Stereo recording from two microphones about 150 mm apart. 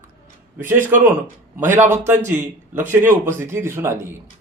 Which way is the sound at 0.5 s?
15° right (ahead or behind).